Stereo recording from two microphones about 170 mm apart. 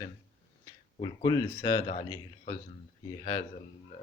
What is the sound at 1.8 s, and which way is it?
Speech, 35° left (ahead or behind).